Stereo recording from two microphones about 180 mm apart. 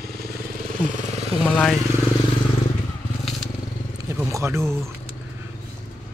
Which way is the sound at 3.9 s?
15° right (ahead or behind).